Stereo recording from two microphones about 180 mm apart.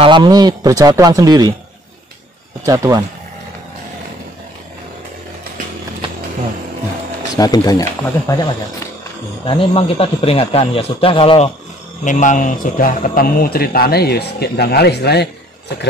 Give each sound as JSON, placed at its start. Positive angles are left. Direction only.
{"t": 0.0, "sound": "speech", "side_deg": -25}
{"t": 2.6, "sound": "speech", "side_deg": -20}
{"t": 7.3, "sound": "speech", "side_deg": 20}
{"t": 9.5, "sound": "a man's voice", "side_deg": 30}
{"t": 12.0, "sound": "a man's voice", "side_deg": 45}